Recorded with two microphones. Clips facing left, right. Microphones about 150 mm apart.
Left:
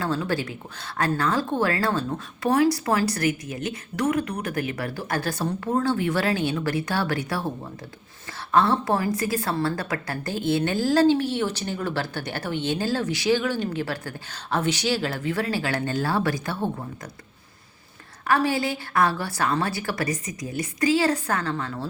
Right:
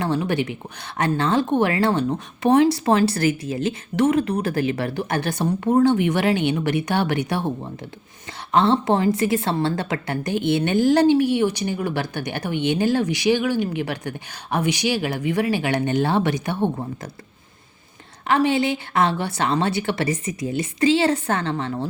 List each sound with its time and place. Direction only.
0.0 s a woman's voice: 20° right (ahead or behind)
18.3 s a woman's voice: 20° right (ahead or behind)